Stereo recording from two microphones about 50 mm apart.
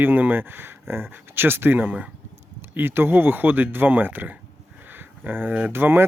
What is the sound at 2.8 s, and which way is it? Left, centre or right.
Speech, right.